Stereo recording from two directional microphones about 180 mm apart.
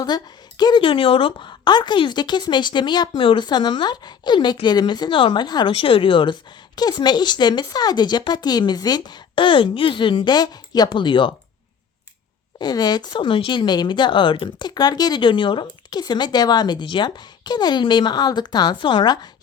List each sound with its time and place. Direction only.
0.0 s speech: 25° left (ahead or behind)
12.5 s speech: 20° left (ahead or behind)